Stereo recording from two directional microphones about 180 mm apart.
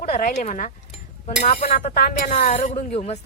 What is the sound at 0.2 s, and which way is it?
Speech, 45° left (ahead or behind).